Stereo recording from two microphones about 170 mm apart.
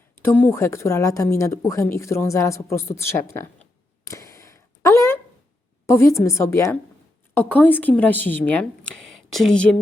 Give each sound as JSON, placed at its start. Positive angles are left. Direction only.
{"t": 0.2, "sound": "speech", "side_deg": 10}
{"t": 4.0, "sound": "a sound", "side_deg": 20}
{"t": 5.8, "sound": "speech", "side_deg": 15}